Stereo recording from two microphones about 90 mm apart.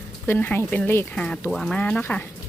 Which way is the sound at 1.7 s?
15° left (ahead or behind).